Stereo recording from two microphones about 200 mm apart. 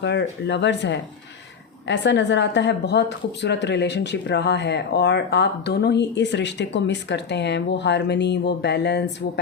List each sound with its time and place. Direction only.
0.0 s speech: 60° left (ahead or behind)